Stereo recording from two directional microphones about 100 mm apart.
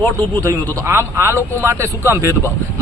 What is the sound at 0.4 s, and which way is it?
Speech, 25° right (ahead or behind).